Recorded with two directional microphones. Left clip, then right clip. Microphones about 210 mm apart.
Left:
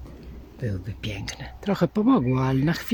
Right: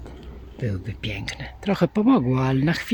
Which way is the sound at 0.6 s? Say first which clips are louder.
Right 3 dB; 15° right (ahead or behind).